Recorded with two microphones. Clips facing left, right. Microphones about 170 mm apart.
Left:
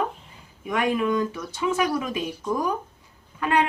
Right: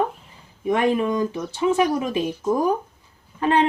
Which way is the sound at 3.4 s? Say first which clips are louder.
Right 3 dB; 30° right (ahead or behind).